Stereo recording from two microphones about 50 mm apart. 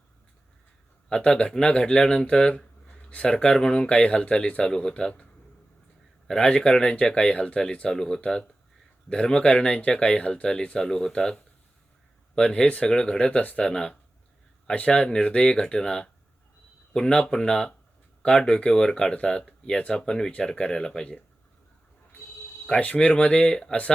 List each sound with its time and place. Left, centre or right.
1.1 s speech: centre
6.2 s speech: centre
13.4 s speech: left
13.7 s speech: centre
22.8 s speech: left